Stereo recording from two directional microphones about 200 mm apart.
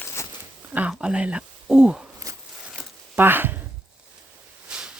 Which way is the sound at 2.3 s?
15° right (ahead or behind).